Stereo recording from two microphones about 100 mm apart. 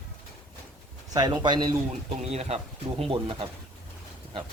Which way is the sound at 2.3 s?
90° right.